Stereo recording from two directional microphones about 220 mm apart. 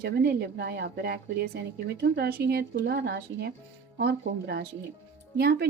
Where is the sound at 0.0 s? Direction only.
45° right (ahead or behind).